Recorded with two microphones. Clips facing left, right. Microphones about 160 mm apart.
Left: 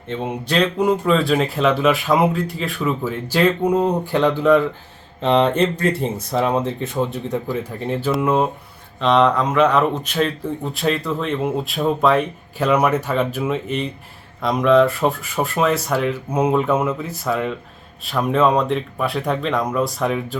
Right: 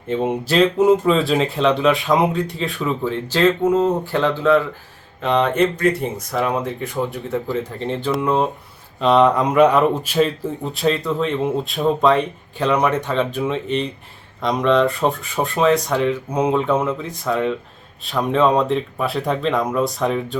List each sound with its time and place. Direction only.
0.1 s speech: 5° right (ahead or behind); by 4.6 s 15° left (ahead or behind)
5.2 s speech: 30° left (ahead or behind); by 8.4 s 5° left (ahead or behind)
9.0 s speech: 5° right (ahead or behind)